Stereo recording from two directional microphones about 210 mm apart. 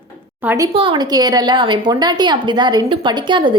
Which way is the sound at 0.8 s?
20° right (ahead or behind).